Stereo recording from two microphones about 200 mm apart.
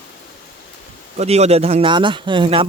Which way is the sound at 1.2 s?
30° right (ahead or behind).